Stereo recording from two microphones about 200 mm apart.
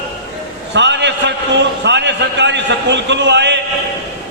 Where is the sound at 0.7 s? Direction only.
60° right (ahead or behind).